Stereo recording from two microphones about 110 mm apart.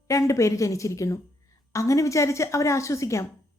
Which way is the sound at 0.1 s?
30° left (ahead or behind).